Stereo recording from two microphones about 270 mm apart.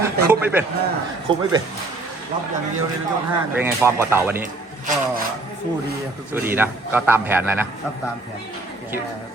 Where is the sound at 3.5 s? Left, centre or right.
Centre.